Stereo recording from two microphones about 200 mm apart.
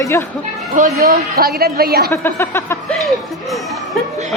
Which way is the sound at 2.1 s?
10° left (ahead or behind).